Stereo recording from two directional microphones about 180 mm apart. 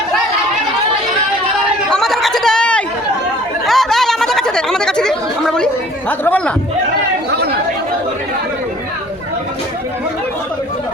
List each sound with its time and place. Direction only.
1.9 s chatter: centre (ahead or behind)
7.3 s chatter: 65° right (ahead or behind)